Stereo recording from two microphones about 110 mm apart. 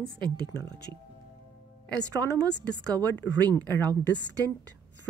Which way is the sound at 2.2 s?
35° right (ahead or behind).